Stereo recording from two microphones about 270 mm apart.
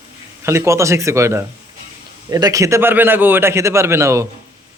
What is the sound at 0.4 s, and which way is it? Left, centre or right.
A man's voice, centre.